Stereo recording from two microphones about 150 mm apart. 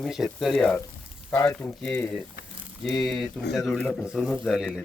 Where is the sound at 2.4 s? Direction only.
65° left (ahead or behind).